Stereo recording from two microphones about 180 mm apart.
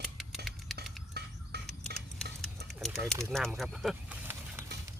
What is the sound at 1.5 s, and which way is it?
Camera, 65° right (ahead or behind).